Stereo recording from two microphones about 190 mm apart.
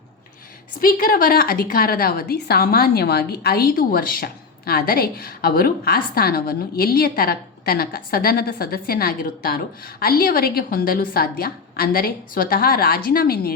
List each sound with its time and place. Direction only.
0.8 s a woman's voice: 45° left (ahead or behind)